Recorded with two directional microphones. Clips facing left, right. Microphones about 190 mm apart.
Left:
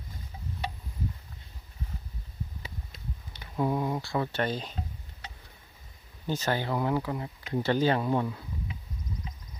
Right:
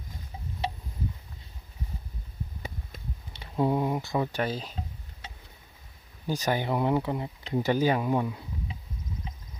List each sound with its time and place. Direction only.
3.3 s speech: 25° right (ahead or behind); by 4.7 s 5° right (ahead or behind)
6.2 s speech: 15° right (ahead or behind)